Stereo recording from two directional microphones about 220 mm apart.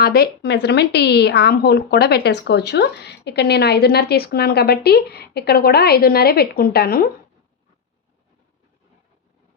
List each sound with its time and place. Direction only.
0.0 s a woman's voice: 45° left (ahead or behind)